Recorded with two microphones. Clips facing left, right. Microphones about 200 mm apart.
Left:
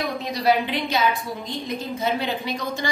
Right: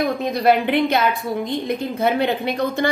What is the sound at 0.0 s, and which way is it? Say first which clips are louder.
A woman's voice: right 5 dB; 55° right (ahead or behind).